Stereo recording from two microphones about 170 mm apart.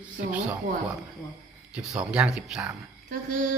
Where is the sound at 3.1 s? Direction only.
50° right (ahead or behind).